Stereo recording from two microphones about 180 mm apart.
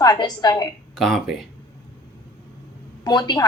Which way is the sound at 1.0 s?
Centre (ahead or behind).